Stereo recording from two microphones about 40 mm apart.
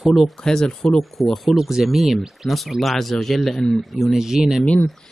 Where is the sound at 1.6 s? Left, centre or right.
Centre.